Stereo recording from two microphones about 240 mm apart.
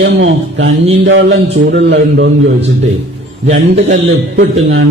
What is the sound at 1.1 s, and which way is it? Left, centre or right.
A man's voice, right.